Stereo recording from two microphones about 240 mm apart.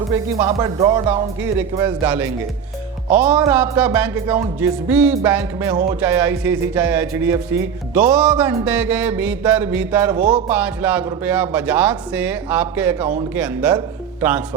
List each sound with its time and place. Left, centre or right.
0.1 s speech: centre
10.2 s music: right
10.5 s speech: centre